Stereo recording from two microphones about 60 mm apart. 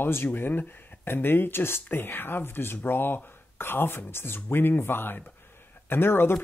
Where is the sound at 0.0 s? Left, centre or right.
Left.